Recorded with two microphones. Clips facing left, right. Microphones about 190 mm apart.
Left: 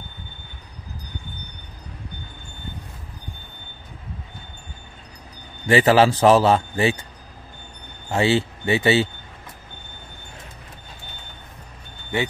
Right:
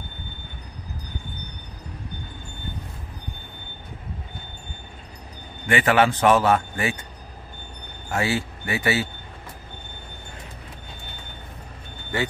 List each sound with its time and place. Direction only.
5.7 s a man's voice: 30° left (ahead or behind)
8.1 s speech: 25° left (ahead or behind)